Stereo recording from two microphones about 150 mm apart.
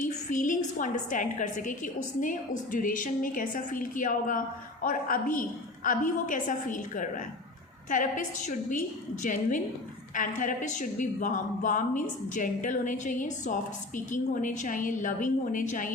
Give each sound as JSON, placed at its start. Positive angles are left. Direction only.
{"t": 0.0, "sound": "a woman's voice", "side_deg": 60}